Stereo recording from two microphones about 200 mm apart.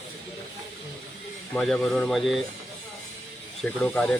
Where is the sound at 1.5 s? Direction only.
5° left (ahead or behind).